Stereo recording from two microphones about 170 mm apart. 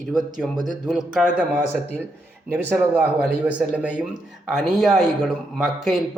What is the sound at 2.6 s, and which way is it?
Speech, 10° right (ahead or behind).